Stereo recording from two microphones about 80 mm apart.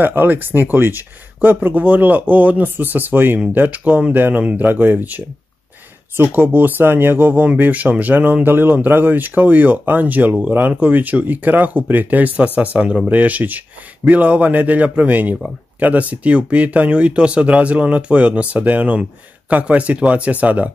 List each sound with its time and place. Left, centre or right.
0.0 s speech: right